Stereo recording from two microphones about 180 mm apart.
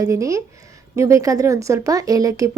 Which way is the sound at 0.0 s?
15° right (ahead or behind).